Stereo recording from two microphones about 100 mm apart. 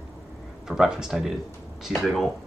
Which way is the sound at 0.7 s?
5° right (ahead or behind).